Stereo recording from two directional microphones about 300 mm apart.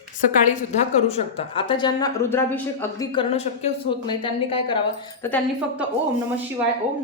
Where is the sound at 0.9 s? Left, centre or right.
Left.